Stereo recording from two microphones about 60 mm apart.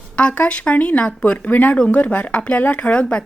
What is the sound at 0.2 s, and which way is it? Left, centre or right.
Speech, centre.